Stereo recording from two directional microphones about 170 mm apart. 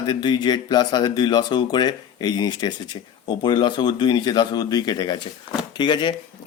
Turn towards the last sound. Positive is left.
turn(degrees=25)  # may be behind; listen again after turning